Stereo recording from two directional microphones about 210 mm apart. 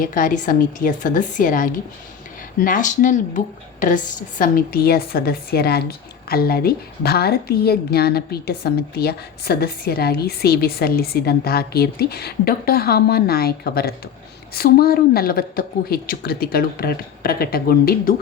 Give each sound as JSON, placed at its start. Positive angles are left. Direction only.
{"t": 0.0, "sound": "a woman's voice", "side_deg": 40}